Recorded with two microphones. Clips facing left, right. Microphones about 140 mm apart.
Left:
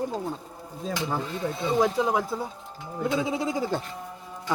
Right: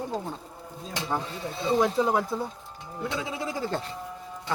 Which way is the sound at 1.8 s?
Centre (ahead or behind).